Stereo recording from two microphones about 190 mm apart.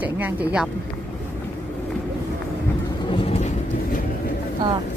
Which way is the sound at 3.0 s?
30° left (ahead or behind).